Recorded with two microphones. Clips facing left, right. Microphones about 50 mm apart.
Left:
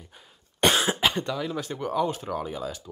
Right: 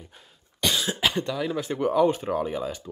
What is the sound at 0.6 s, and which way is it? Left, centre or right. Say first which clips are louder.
Cough: left 4 dB; left.